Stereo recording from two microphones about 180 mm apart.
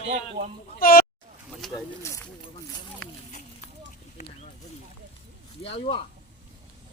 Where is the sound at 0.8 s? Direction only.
55° left (ahead or behind).